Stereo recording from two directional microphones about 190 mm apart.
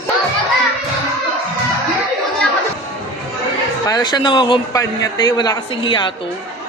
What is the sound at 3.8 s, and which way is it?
A man's voice, 20° left (ahead or behind).